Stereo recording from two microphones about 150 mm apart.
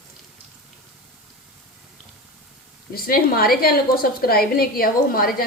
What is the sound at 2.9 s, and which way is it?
A woman's voice, 80° left.